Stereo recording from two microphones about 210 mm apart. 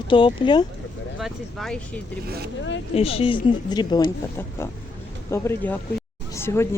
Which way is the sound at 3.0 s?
25° left (ahead or behind).